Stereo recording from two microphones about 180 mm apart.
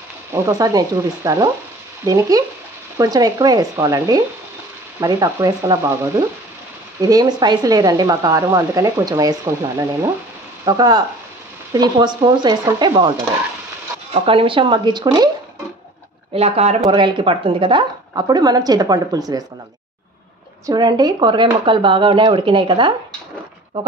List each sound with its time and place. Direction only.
0.3 s speech: 20° right (ahead or behind)
14.2 s speech: 30° right (ahead or behind)
16.3 s speech: 35° right (ahead or behind)
16.8 s speech: 25° right (ahead or behind)
20.6 s speech: 25° right (ahead or behind)